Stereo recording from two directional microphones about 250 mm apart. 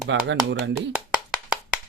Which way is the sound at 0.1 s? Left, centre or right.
Right.